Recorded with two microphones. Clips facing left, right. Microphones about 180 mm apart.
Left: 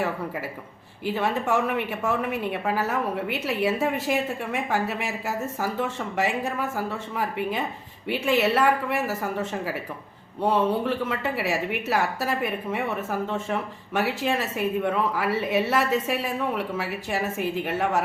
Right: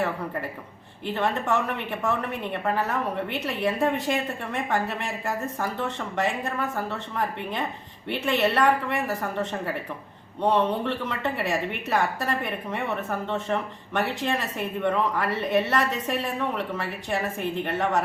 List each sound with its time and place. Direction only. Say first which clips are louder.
1.0 s speech: left 1 dB; 10° left (ahead or behind)